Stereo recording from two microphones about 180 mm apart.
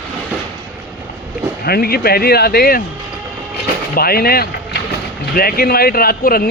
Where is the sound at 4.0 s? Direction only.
55° left (ahead or behind).